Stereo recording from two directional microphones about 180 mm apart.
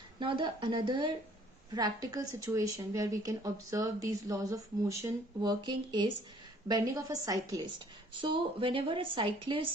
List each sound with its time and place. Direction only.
0.2 s speech: 25° right (ahead or behind)